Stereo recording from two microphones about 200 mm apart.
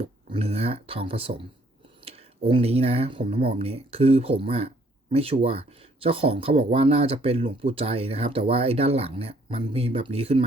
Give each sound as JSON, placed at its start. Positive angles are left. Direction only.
{"t": 0.3, "sound": "speech", "side_deg": -30}